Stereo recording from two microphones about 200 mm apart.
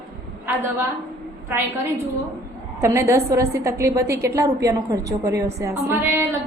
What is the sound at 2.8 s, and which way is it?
A woman's voice, 15° right (ahead or behind).